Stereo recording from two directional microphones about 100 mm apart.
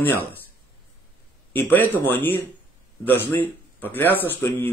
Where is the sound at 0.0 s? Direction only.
20° left (ahead or behind).